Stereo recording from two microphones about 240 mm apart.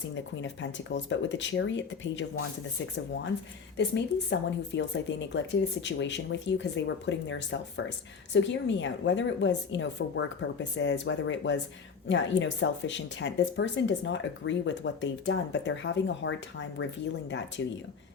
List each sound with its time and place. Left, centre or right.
0.4 s speech: left
3.8 s speech: left
17.3 s speech: left